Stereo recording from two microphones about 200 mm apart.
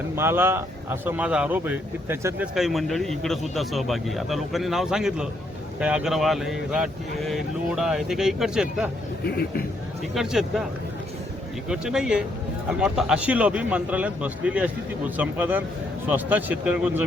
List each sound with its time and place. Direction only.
0.2 s speech: 10° right (ahead or behind)
9.2 s speech: 50° left (ahead or behind)
10.2 s speech: centre (ahead or behind)
11.7 s speech: 5° right (ahead or behind)